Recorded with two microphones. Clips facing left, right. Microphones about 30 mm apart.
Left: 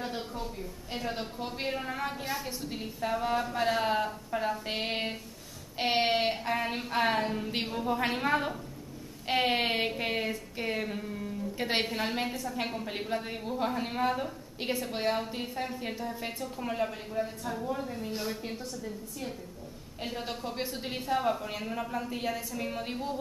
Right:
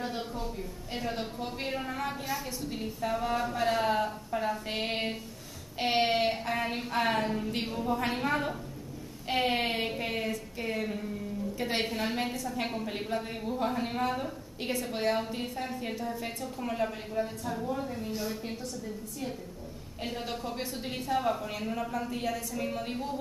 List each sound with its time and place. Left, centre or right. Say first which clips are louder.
0.0 s a sound: right 1 dB; centre
0.9 s a woman's voice: right 1 dB; centre
11.5 s a woman's voice: left 2 dB; left
11.9 s a woman's voice: even; centre
20.0 s a woman's voice: right 1 dB; centre